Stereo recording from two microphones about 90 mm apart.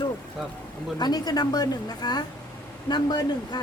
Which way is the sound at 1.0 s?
50° left (ahead or behind).